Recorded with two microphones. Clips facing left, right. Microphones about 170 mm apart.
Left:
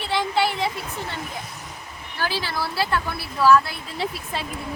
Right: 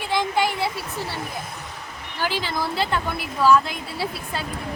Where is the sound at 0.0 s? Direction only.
15° right (ahead or behind).